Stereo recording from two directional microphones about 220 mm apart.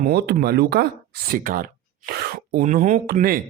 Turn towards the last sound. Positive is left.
turn(degrees=-45)  # may be behind; listen again after turning